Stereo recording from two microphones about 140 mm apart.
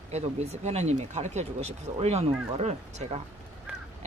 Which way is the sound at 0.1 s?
55° right (ahead or behind).